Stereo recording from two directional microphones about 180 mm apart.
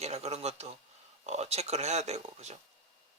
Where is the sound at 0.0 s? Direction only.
35° right (ahead or behind).